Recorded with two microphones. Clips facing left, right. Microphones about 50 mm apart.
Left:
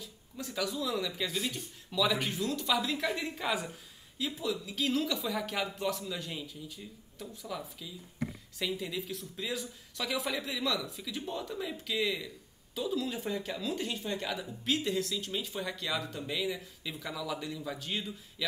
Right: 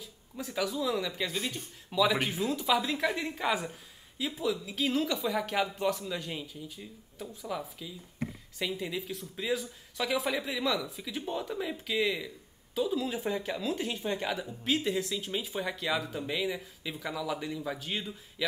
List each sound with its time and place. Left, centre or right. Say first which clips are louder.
0.0 s speech: right 2 dB; centre
1.9 s speech: right 3 dB; centre
2.2 s speech: right 3 dB; centre
14.3 s speech: right 2 dB; centre